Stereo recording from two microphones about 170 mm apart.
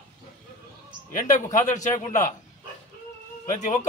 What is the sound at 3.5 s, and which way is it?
Speech, 45° left (ahead or behind).